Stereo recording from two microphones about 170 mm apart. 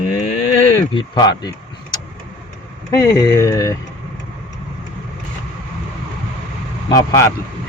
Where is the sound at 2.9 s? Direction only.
20° left (ahead or behind).